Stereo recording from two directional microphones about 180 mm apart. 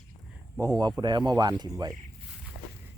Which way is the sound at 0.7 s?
25° right (ahead or behind).